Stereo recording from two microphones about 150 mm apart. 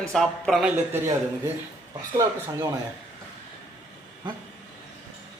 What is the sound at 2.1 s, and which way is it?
Speech, 25° right (ahead or behind).